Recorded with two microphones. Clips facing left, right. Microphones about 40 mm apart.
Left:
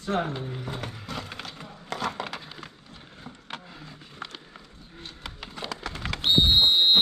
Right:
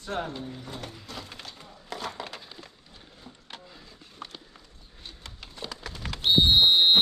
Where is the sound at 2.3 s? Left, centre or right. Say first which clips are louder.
Left 4 dB; left.